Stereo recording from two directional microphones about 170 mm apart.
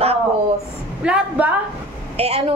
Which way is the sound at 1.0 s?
5° right (ahead or behind).